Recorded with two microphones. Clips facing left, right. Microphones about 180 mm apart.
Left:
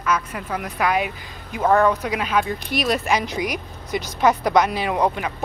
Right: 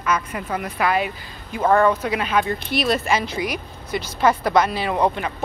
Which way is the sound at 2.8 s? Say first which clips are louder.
Even; 15° left (ahead or behind).